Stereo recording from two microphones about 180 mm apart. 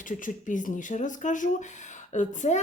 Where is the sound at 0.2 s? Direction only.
45° left (ahead or behind).